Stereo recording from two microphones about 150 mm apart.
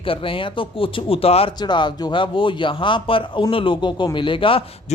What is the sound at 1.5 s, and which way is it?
Speech, 30° left (ahead or behind).